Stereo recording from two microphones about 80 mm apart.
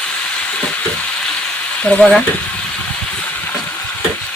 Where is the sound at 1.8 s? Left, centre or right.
Centre.